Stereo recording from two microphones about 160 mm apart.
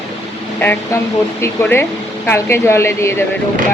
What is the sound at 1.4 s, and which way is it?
Speech, 15° left (ahead or behind).